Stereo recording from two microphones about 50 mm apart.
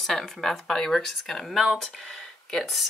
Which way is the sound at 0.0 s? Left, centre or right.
Centre.